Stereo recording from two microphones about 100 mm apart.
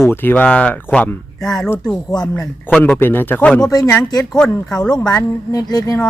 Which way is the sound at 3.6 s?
40° left (ahead or behind).